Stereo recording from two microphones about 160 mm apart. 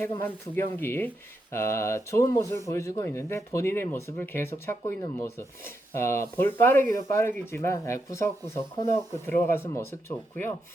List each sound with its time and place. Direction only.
0.5 s speech: 15° left (ahead or behind)